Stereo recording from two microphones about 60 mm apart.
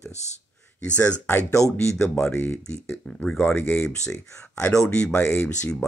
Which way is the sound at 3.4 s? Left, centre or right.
Left.